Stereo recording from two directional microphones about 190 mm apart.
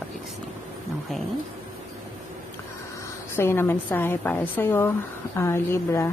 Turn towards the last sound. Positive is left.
turn(degrees=15)  # may be behind; listen again after turning